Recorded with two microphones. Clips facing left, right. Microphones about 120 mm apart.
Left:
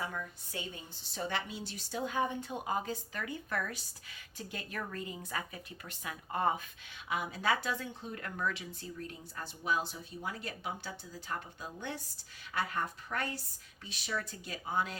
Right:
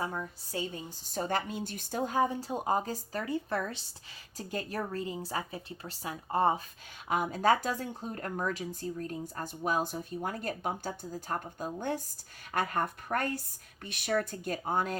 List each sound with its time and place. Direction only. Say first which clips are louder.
0.0 s a woman's voice: right 4 dB; 35° right (ahead or behind)
7.1 s speech: right 6 dB; 45° right (ahead or behind)